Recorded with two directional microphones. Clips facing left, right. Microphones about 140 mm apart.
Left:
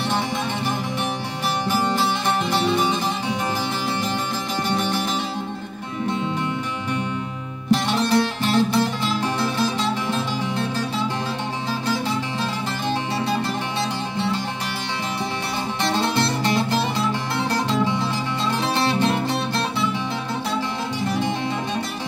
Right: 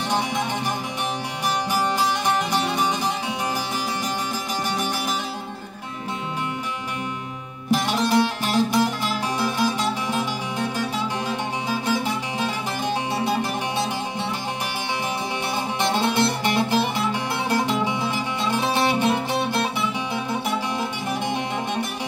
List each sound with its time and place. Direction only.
1.7 s music: 15° right (ahead or behind)
7.7 s music: 10° right (ahead or behind)
11.7 s music: 15° right (ahead or behind)
15.8 s music: 15° right (ahead or behind)